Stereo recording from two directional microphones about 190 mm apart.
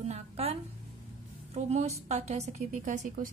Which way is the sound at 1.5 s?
35° right (ahead or behind).